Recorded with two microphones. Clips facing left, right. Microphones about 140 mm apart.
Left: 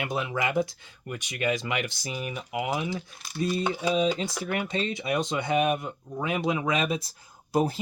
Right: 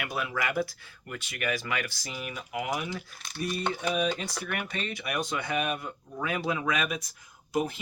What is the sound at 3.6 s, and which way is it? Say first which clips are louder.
Speech: left 2 dB; 15° left (ahead or behind).